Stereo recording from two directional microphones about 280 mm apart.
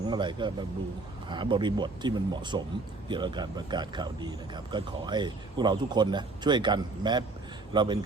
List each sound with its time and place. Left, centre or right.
0.1 s speech: centre